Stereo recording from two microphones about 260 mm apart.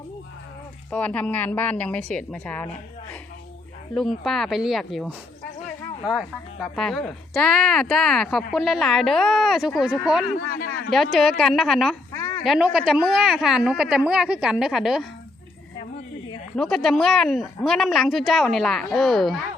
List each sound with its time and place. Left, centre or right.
0.9 s a woman's voice: centre
4.2 s a woman's voice: centre
10.5 s a man's voice: left
10.9 s a woman's voice: centre
12.1 s a sound: centre
12.5 s a woman's voice: centre
16.6 s a woman's voice: centre